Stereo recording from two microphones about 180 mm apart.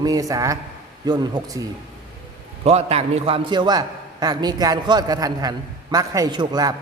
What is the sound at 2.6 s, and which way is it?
A man's voice, 35° right (ahead or behind).